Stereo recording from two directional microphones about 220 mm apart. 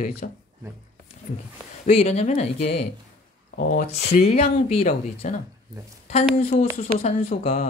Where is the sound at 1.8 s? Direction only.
30° left (ahead or behind).